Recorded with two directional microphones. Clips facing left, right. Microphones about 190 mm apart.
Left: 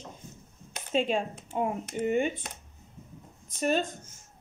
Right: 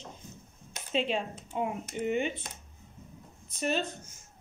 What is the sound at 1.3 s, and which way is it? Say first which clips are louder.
Speech: left 3 dB; 65° left (ahead or behind).